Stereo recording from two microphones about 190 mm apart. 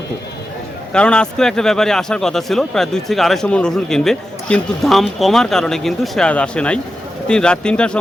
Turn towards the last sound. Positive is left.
turn(degrees=5)  # may be behind; listen again after turning